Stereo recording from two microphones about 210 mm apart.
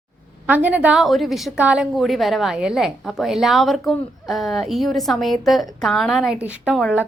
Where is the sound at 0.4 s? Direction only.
10° right (ahead or behind).